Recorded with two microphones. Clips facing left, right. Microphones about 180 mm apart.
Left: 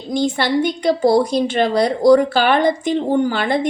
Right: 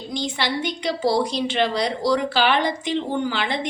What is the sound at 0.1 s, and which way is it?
A woman's voice, 50° left (ahead or behind).